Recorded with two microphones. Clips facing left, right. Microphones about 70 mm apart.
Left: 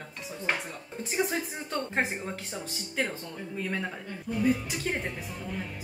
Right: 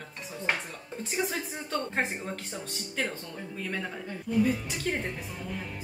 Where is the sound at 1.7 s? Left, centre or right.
Centre.